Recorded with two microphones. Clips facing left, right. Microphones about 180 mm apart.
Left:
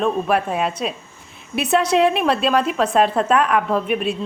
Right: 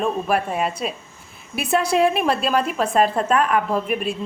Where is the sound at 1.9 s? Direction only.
Centre (ahead or behind).